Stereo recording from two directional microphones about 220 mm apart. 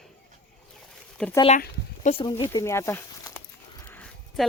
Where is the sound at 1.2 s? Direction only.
Centre (ahead or behind).